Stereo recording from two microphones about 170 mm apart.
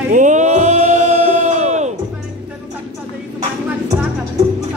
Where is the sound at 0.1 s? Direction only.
45° right (ahead or behind).